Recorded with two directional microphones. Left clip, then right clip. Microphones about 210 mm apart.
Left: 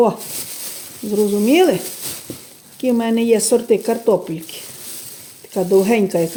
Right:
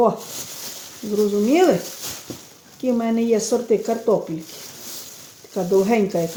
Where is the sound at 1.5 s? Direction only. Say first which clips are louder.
Left 3 dB; 50° left (ahead or behind).